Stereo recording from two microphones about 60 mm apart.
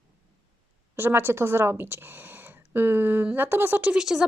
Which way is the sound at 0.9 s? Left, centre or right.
Right.